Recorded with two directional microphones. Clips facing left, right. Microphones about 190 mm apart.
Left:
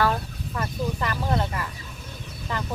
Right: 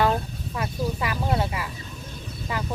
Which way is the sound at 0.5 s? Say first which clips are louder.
Right 1 dB; 5° right (ahead or behind).